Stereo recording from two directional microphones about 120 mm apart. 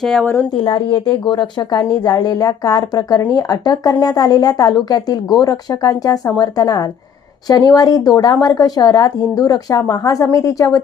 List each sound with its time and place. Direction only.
0.0 s a woman's voice: 5° left (ahead or behind)
0.6 s a woman's voice: 45° left (ahead or behind); by 10.8 s 30° left (ahead or behind)